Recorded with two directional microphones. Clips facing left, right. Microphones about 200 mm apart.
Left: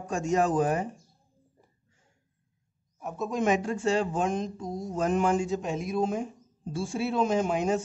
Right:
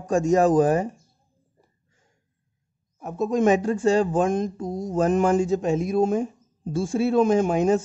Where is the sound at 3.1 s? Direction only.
40° right (ahead or behind).